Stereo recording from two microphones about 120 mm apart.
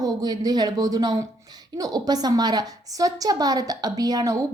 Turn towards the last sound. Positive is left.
turn(degrees=-35)  # may be behind; listen again after turning